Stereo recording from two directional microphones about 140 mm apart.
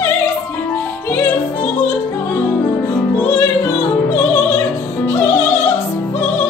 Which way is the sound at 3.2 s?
15° left (ahead or behind).